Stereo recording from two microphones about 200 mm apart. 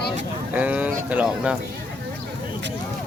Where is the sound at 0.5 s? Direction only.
5° right (ahead or behind).